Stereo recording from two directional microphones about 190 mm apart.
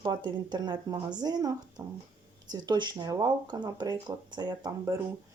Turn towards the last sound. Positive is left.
turn(degrees=-20)  # may be behind; listen again after turning